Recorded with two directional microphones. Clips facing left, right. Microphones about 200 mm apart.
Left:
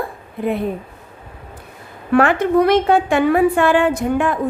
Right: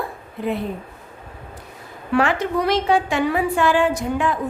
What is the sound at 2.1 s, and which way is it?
A woman's voice, 55° left (ahead or behind).